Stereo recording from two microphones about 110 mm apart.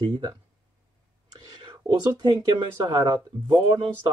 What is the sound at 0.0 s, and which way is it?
Speech, 45° right (ahead or behind).